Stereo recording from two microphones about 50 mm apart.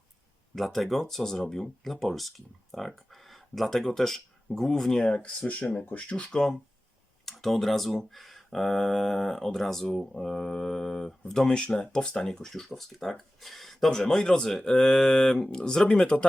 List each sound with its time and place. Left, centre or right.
0.5 s speech: centre
5.0 s speech: left
7.3 s speech: centre
11.4 s speech: centre
14.0 s speech: centre